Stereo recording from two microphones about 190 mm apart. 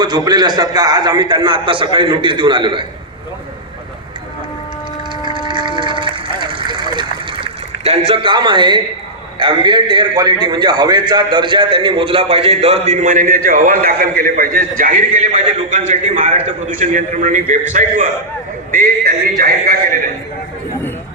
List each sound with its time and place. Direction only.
0.0 s a man's voice: 20° right (ahead or behind)
5.2 s a sound: 25° right (ahead or behind)
7.4 s a man's voice: 30° right (ahead or behind); by 20.0 s 50° right (ahead or behind)